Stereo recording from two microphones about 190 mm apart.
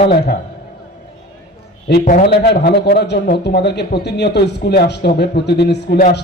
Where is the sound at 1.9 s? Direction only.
60° left (ahead or behind).